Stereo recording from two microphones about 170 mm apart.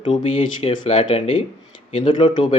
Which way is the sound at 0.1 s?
35° left (ahead or behind).